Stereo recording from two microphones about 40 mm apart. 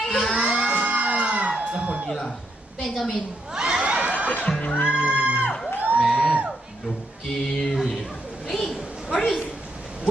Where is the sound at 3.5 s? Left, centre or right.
Centre.